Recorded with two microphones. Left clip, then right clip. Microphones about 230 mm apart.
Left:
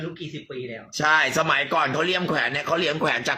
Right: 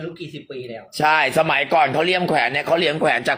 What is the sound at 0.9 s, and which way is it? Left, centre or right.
Speech, centre.